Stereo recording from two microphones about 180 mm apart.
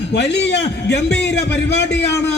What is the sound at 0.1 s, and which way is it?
A man's voice, 75° left (ahead or behind).